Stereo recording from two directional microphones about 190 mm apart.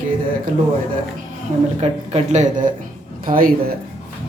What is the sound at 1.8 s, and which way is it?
A man's voice, 35° right (ahead or behind).